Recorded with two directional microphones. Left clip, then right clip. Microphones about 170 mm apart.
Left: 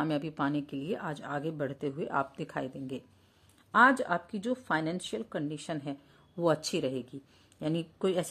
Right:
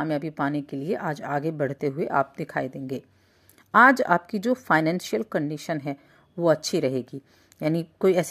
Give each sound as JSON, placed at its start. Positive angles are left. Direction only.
{"t": 0.0, "sound": "speech", "side_deg": -20}